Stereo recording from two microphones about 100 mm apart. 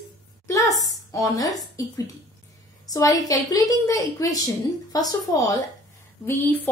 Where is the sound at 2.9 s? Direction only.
40° left (ahead or behind).